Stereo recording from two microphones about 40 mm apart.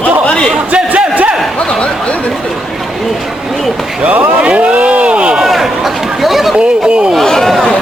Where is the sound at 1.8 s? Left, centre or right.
Left.